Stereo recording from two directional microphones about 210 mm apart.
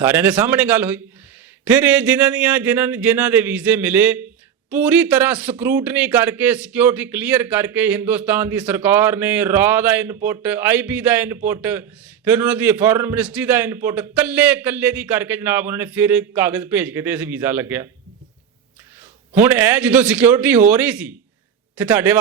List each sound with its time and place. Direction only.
0.0 s a man's voice: 10° right (ahead or behind)
19.3 s a man's voice: 10° right (ahead or behind)